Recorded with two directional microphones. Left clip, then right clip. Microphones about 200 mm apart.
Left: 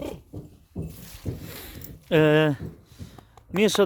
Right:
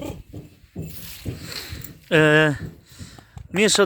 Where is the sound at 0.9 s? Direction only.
15° left (ahead or behind).